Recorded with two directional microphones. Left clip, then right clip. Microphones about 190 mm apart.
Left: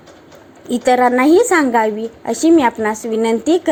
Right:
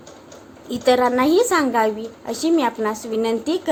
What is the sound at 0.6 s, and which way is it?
A woman's voice, 25° left (ahead or behind).